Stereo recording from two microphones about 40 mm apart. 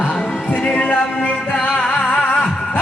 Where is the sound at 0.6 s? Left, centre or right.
Left.